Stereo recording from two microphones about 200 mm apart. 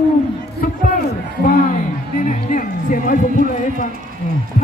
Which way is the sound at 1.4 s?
40° left (ahead or behind).